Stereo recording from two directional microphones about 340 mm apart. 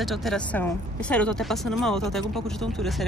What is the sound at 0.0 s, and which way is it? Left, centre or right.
Speech, centre.